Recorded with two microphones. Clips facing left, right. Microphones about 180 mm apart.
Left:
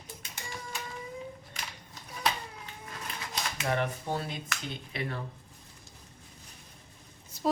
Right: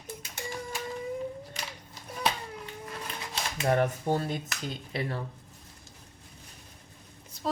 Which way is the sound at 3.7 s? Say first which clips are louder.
Right 6 dB; 45° right (ahead or behind).